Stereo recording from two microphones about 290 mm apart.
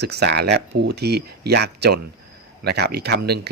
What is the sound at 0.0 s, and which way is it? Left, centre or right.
Speech, right.